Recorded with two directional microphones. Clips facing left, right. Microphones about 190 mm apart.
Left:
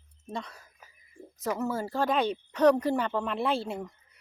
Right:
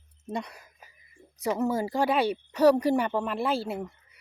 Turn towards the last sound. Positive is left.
turn(degrees=-5)  # may be behind; listen again after turning